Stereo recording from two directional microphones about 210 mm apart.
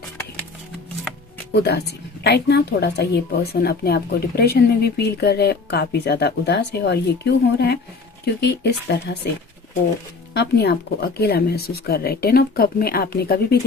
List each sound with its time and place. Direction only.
1.6 s a woman's voice: 50° left (ahead or behind)
10.3 s a woman's voice: 55° left (ahead or behind)